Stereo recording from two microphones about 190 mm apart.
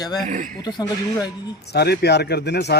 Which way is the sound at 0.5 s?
20° left (ahead or behind).